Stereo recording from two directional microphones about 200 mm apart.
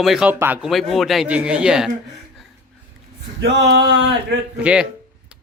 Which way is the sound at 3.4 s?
60° right (ahead or behind).